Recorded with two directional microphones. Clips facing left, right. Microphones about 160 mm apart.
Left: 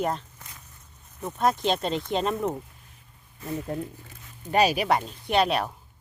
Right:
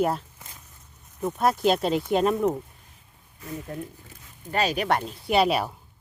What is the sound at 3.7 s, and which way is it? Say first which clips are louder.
Speech: left 3 dB; 25° left (ahead or behind).